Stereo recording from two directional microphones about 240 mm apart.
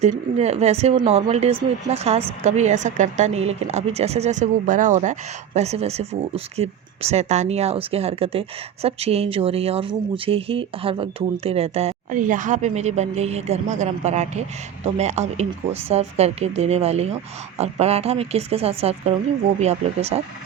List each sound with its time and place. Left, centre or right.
0.0 s speech: right